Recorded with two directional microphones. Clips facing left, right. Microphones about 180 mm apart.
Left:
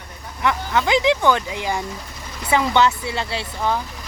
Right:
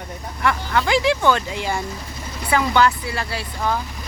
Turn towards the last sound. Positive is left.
turn(degrees=10)  # may be behind; listen again after turning